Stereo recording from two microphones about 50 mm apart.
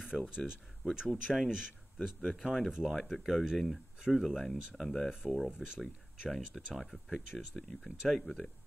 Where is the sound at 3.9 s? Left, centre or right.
Centre.